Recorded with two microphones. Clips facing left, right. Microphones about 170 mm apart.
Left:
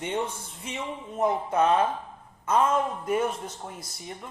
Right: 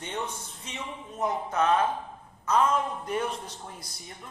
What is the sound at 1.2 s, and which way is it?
Speech, 30° left (ahead or behind).